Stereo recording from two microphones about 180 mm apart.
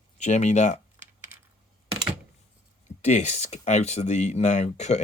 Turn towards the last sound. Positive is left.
turn(degrees=40)  # may be behind; listen again after turning